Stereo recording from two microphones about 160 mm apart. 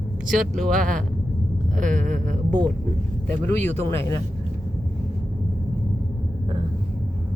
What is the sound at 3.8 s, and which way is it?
Speech, 40° right (ahead or behind).